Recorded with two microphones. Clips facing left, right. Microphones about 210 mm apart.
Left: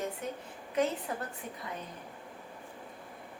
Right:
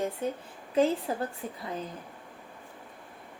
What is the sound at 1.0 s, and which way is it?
Speech, 30° right (ahead or behind).